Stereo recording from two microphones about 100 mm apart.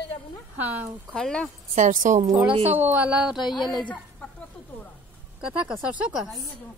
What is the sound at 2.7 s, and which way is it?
A woman's voice, 20° right (ahead or behind).